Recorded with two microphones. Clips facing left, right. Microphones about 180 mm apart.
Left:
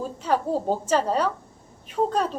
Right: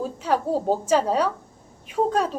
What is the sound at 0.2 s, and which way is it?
A woman's voice, 10° right (ahead or behind).